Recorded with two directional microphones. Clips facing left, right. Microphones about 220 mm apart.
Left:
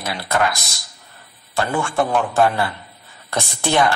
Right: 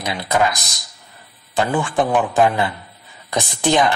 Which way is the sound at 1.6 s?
15° right (ahead or behind).